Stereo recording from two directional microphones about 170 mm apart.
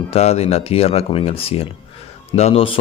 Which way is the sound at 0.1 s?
40° left (ahead or behind).